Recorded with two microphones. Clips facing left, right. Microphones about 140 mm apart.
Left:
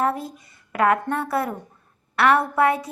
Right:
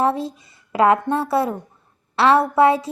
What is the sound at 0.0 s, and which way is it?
Speech, 25° right (ahead or behind).